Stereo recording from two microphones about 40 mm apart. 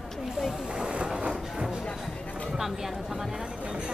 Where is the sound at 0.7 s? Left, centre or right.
Right.